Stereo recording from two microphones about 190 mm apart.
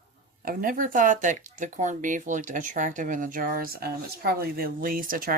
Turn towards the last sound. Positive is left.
turn(degrees=-45)  # may be behind; listen again after turning